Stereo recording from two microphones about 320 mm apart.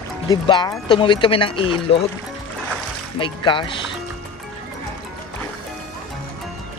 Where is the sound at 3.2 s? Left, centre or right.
Centre.